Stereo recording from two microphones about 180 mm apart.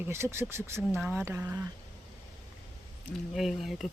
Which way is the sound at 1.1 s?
10° right (ahead or behind).